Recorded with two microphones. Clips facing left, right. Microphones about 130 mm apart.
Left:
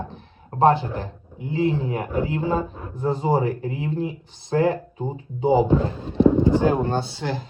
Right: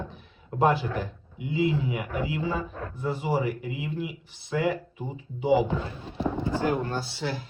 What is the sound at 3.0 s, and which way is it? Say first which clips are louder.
Speech: left 6 dB; 30° left (ahead or behind).